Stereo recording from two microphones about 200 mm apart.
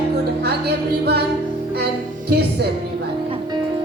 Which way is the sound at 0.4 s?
55° right (ahead or behind).